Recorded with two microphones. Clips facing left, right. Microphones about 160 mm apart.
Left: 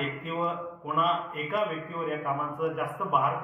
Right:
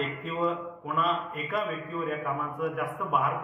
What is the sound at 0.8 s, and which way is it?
A man's voice, centre (ahead or behind).